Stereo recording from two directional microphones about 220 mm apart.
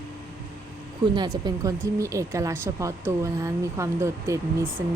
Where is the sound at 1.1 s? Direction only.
20° right (ahead or behind).